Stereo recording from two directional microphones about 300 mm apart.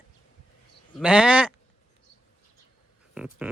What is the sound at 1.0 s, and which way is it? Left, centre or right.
Speech, centre.